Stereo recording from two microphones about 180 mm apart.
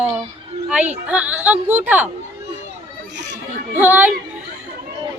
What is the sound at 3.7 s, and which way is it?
Speech, 10° right (ahead or behind).